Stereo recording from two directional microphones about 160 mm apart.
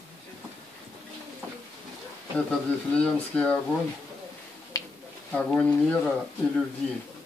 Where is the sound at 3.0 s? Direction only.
10° left (ahead or behind).